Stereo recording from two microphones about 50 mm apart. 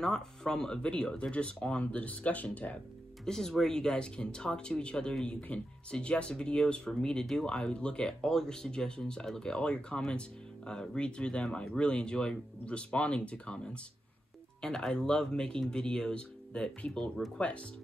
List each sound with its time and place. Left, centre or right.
0.0 s speech: centre; by 2.8 s left
3.3 s speech: centre
14.6 s speech: centre